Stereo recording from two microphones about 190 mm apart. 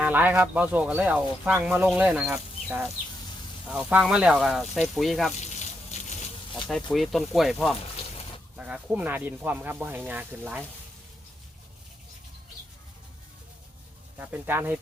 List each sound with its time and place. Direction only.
0.0 s speech: 10° right (ahead or behind)
6.0 s a sound: 35° left (ahead or behind)
6.7 s speech: 5° left (ahead or behind)
14.2 s speech: 10° right (ahead or behind)